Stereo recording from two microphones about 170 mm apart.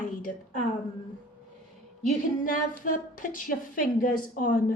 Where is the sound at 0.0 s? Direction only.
50° left (ahead or behind).